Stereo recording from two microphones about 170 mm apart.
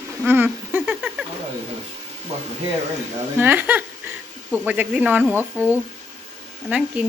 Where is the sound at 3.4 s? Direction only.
10° right (ahead or behind).